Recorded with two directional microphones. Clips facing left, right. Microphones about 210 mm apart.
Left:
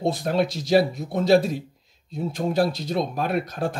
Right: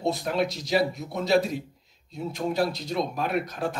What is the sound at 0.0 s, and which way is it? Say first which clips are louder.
Speech: left 3 dB; 30° left (ahead or behind).